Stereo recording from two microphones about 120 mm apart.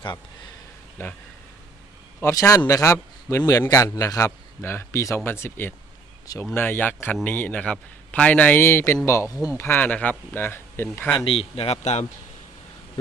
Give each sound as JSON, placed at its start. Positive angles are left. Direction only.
{"t": 2.2, "sound": "speech", "side_deg": 25}
{"t": 11.3, "sound": "speech", "side_deg": 55}